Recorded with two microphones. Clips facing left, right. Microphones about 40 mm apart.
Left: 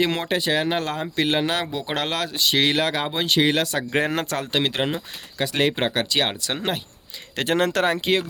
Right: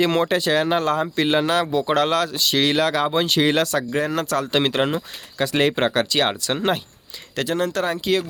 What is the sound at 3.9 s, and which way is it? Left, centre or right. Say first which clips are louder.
Speech: left 4 dB; left.